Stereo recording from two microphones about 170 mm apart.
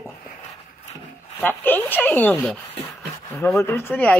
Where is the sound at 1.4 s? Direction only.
10° left (ahead or behind).